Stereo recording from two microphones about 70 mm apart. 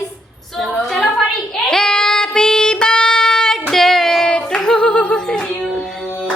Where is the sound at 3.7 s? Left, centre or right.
Centre.